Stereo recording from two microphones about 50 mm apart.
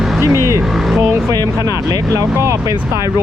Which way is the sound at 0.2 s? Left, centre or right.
Right.